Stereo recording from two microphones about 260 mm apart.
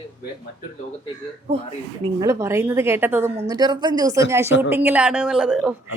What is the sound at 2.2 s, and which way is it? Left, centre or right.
A woman's voice, centre.